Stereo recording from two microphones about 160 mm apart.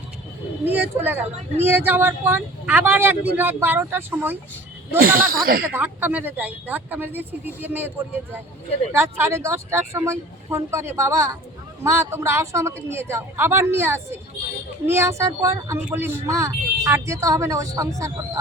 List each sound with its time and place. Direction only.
0.6 s speech: 10° right (ahead or behind)
4.9 s speech: 65° right (ahead or behind)
5.6 s speech: 10° right (ahead or behind)